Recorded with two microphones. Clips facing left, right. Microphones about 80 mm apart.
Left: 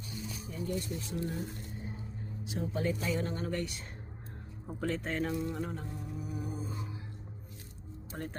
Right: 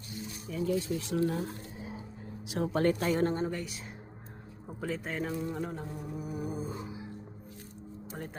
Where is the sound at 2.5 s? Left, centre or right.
Right.